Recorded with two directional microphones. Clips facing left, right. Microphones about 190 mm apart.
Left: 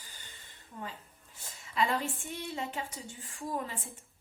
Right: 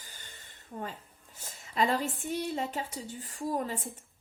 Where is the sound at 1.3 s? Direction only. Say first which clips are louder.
Right 2 dB; 40° right (ahead or behind).